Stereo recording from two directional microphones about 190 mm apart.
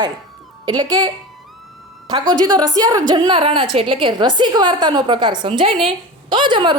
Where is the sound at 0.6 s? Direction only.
20° right (ahead or behind).